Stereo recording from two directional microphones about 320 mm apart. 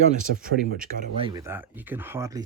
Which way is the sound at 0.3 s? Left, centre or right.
Right.